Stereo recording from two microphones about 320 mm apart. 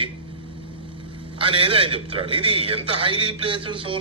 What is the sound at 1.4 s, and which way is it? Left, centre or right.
A man's voice, centre.